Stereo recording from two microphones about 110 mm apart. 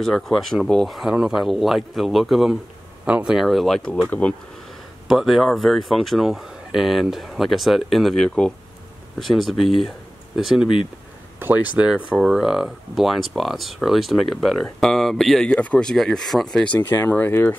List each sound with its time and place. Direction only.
0.0 s speech: 5° left (ahead or behind)
5.0 s speech: 5° right (ahead or behind)
11.3 s speech: 15° right (ahead or behind); by 16.7 s 5° left (ahead or behind)
16.7 s speech: 20° left (ahead or behind)